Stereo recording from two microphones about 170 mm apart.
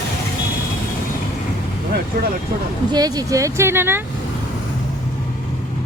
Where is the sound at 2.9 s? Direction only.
25° right (ahead or behind).